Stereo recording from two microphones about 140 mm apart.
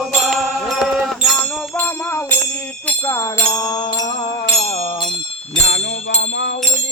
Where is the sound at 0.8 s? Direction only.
5° right (ahead or behind).